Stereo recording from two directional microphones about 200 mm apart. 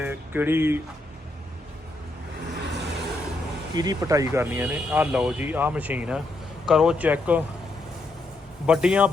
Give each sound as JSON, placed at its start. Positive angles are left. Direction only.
{"t": 0.0, "sound": "speech", "side_deg": -10}
{"t": 2.7, "sound": "vehicle", "side_deg": -60}
{"t": 3.8, "sound": "speech", "side_deg": -20}
{"t": 8.6, "sound": "speech", "side_deg": -5}